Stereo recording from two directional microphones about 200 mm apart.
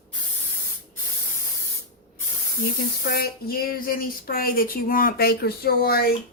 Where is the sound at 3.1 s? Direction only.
45° left (ahead or behind).